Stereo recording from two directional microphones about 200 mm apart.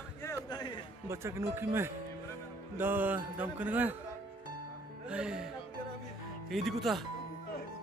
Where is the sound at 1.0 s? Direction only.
15° right (ahead or behind).